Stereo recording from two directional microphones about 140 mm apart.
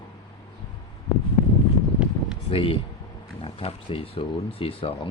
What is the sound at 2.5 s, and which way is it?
Speech, 40° left (ahead or behind).